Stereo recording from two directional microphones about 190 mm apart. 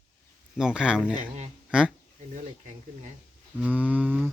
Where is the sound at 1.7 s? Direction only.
5° right (ahead or behind).